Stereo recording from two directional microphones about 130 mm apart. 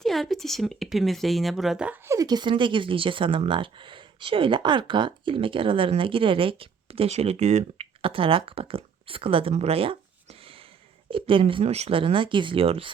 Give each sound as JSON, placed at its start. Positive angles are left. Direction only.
{"t": 0.0, "sound": "speech", "side_deg": 0}
{"t": 2.0, "sound": "speech", "side_deg": -30}
{"t": 8.0, "sound": "speech", "side_deg": -45}